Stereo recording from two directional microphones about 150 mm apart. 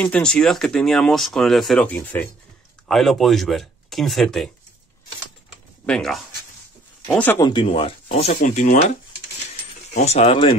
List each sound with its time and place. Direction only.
0.0 s speech: 5° left (ahead or behind)
2.9 s speech: centre (ahead or behind)
5.9 s speech: 5° left (ahead or behind)
7.3 s speech: 30° left (ahead or behind)
8.3 s speech: 60° left (ahead or behind)
9.9 s speech: 45° left (ahead or behind)